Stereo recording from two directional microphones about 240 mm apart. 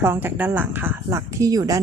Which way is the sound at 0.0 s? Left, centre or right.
Centre.